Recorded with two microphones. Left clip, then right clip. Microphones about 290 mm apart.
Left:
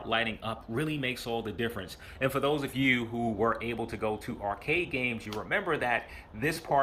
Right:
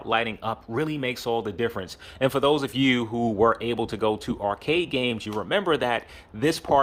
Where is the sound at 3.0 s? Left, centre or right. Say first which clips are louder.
Right 7 dB; right.